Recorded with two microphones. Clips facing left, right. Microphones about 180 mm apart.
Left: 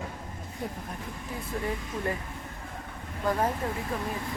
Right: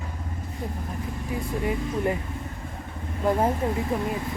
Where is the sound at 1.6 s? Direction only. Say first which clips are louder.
Right 7 dB; 15° right (ahead or behind).